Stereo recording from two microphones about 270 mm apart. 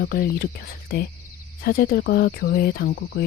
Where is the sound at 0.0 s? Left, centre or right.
Left.